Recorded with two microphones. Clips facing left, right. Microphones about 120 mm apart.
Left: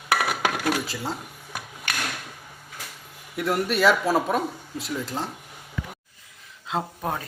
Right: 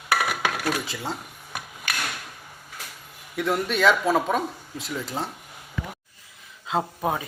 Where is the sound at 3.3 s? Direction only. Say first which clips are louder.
Even; 5° left (ahead or behind).